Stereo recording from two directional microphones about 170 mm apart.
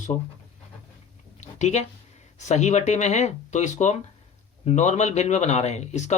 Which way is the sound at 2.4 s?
40° left (ahead or behind).